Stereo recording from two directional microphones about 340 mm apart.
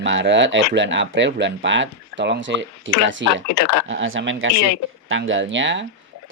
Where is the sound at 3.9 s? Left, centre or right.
Right.